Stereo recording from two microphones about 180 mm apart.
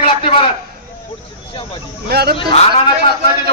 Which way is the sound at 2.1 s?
60° right (ahead or behind).